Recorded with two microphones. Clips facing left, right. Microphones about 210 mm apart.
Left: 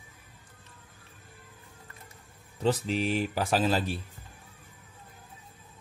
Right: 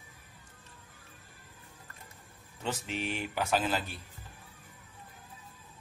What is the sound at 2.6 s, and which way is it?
Speech, 35° left (ahead or behind).